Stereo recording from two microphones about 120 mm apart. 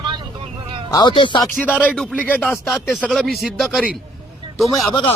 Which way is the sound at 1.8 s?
10° left (ahead or behind).